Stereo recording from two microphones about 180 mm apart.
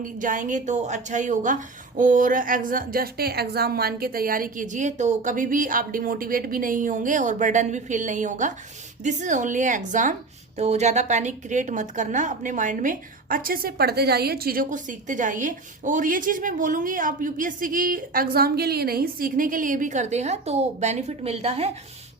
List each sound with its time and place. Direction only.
0.0 s a woman's voice: 45° right (ahead or behind)